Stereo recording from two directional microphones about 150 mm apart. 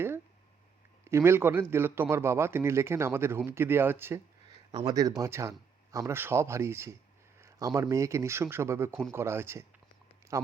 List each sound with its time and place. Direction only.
1.0 s speech: 15° right (ahead or behind)